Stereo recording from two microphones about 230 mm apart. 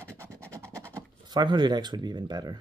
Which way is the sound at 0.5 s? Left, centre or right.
Centre.